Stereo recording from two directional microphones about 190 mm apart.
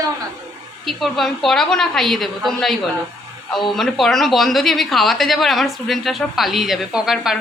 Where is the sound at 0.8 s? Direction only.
Centre (ahead or behind).